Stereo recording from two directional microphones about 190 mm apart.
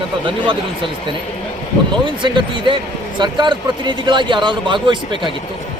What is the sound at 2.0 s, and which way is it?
A man's voice, 25° right (ahead or behind).